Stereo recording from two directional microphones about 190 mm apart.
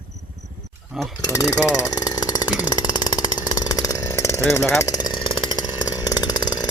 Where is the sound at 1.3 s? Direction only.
15° left (ahead or behind).